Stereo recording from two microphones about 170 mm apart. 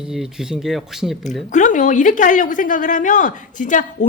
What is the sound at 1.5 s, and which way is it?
A woman's voice, 50° left (ahead or behind).